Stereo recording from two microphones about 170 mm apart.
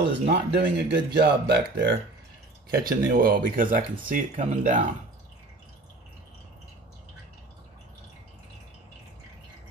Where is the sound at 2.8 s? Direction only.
55° right (ahead or behind).